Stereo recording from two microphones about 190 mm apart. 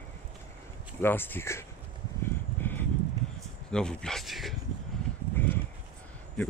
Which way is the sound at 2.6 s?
10° left (ahead or behind).